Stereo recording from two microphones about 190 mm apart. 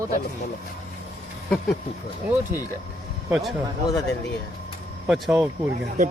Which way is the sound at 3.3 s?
Centre (ahead or behind).